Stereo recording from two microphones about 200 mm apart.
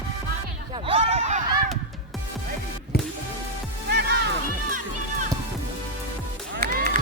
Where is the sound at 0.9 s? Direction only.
35° right (ahead or behind).